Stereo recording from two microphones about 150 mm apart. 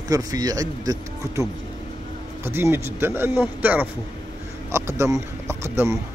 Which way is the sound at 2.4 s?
15° right (ahead or behind).